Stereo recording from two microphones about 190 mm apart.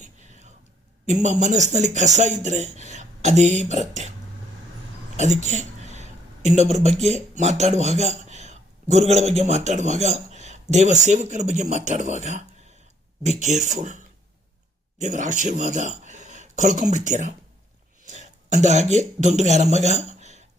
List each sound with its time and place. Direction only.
1.0 s speech: 40° right (ahead or behind)
5.2 s speech: 40° right (ahead or behind)